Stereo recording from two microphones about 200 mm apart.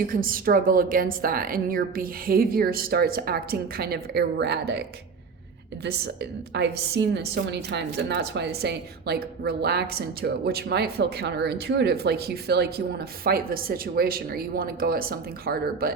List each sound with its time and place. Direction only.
0.1 s a woman's voice: 45° right (ahead or behind)
6.5 s a woman's voice: 60° right (ahead or behind)